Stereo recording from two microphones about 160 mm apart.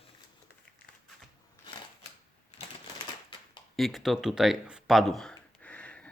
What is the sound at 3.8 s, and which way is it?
Speech, centre (ahead or behind).